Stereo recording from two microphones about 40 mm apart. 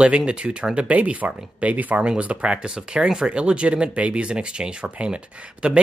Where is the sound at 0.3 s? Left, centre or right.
Right.